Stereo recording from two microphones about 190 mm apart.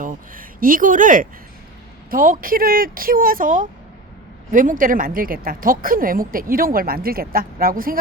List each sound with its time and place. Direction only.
0.0 s a woman's voice: 45° right (ahead or behind)